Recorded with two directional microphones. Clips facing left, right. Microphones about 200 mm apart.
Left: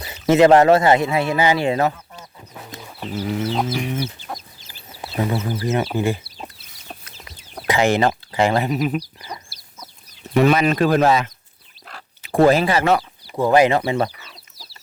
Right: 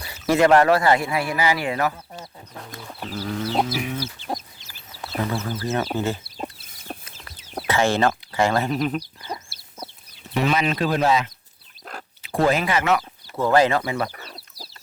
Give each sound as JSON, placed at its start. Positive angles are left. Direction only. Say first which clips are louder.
{"t": 0.0, "sound": "speech", "louder": "left 5 dB", "side_deg": 20}
{"t": 3.2, "sound": "speech", "louder": "left 4 dB", "side_deg": 20}
{"t": 3.7, "sound": "chicken", "louder": "left 3 dB", "side_deg": -5}
{"t": 4.9, "sound": "a sound", "louder": "left 3 dB", "side_deg": 20}
{"t": 5.4, "sound": "speech", "louder": "left 3 dB", "side_deg": 15}
{"t": 6.2, "sound": "chicken", "louder": "right 4 dB", "side_deg": -50}
{"t": 7.7, "sound": "speech", "louder": "left 3 dB", "side_deg": 15}
{"t": 9.0, "sound": "chicken", "louder": "left 1 dB", "side_deg": -25}
{"t": 10.3, "sound": "speech", "louder": "left 6 dB", "side_deg": 50}
{"t": 12.2, "sound": "a sound", "louder": "left 6 dB", "side_deg": 50}
{"t": 12.5, "sound": "speech", "louder": "left 4 dB", "side_deg": 35}
{"t": 13.2, "sound": "speech", "louder": "left 3 dB", "side_deg": 15}
{"t": 14.2, "sound": "chicken", "louder": "right 5 dB", "side_deg": -35}